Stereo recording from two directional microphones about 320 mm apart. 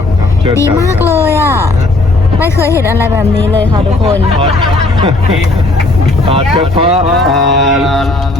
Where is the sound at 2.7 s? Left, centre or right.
Centre.